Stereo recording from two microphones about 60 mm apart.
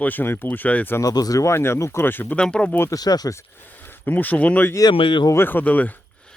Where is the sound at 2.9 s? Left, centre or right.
Left.